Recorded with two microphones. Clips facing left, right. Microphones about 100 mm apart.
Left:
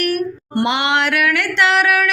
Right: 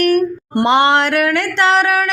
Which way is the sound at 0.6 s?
35° right (ahead or behind).